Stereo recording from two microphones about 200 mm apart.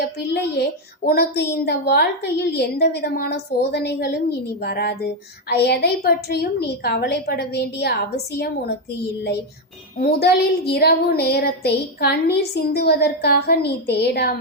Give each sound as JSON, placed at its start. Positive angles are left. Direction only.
{"t": 0.0, "sound": "a woman's voice", "side_deg": 55}
{"t": 10.0, "sound": "a woman's voice", "side_deg": 50}